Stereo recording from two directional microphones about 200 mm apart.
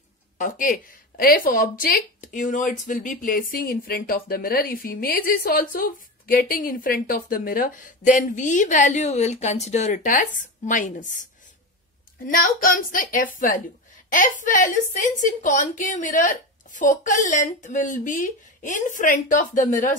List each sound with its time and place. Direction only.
0.4 s speech: 40° left (ahead or behind)
12.3 s speech: 45° left (ahead or behind)